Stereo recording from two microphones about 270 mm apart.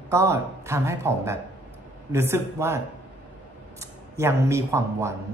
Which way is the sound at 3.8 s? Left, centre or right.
Centre.